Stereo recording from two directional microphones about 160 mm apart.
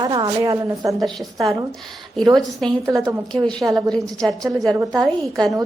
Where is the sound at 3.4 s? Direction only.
20° right (ahead or behind).